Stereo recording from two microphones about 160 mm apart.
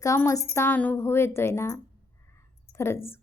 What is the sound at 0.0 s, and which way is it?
A woman's voice, 20° left (ahead or behind).